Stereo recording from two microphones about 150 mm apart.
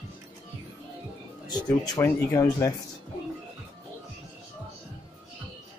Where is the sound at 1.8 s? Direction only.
20° left (ahead or behind).